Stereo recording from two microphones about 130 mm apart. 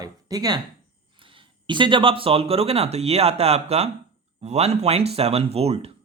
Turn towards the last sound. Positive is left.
turn(degrees=-50)  # may be behind; listen again after turning